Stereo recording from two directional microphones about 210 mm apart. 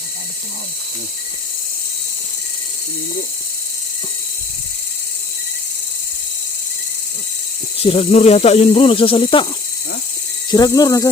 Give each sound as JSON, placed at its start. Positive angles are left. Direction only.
{"t": 7.8, "sound": "speech", "side_deg": 30}
{"t": 10.5, "sound": "speech", "side_deg": 20}